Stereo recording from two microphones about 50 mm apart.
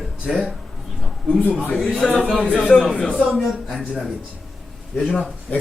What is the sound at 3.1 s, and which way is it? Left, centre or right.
Speech, right.